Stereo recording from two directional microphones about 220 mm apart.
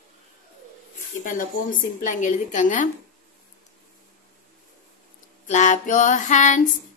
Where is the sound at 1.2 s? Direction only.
40° left (ahead or behind).